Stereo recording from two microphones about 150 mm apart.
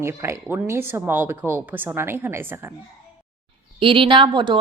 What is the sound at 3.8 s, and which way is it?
Speech, 35° right (ahead or behind).